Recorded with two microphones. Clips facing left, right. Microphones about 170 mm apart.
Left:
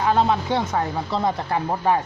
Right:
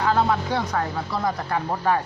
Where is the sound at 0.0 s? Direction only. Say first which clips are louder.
Left 2 dB; 20° left (ahead or behind).